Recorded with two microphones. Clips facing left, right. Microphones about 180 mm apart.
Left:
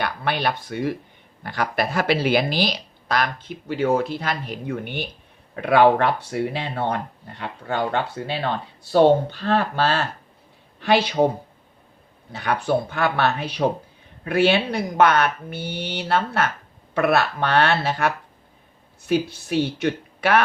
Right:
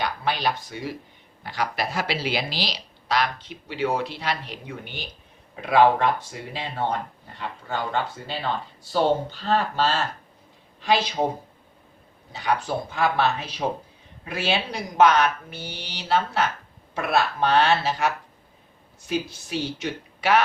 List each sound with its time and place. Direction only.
0.0 s speech: 55° left (ahead or behind)
12.3 s speech: 60° left (ahead or behind)